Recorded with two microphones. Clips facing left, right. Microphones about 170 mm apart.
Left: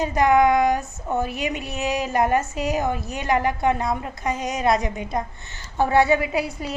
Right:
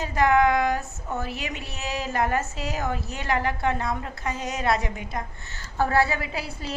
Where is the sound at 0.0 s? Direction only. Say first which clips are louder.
Left 3 dB; 15° left (ahead or behind).